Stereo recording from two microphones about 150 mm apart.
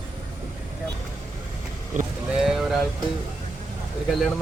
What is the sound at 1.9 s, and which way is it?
Boat, 55° right (ahead or behind).